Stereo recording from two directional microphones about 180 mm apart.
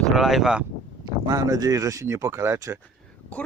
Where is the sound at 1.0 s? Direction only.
20° right (ahead or behind).